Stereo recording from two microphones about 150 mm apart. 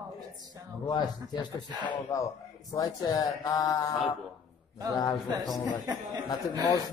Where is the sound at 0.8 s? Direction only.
30° left (ahead or behind).